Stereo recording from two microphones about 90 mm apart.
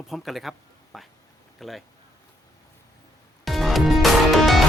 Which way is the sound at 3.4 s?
Centre (ahead or behind).